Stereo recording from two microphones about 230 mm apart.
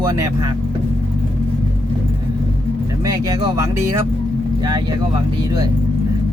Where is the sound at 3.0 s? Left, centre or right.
Centre.